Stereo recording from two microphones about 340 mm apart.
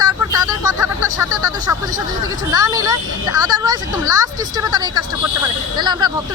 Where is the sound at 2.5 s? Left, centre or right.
Centre.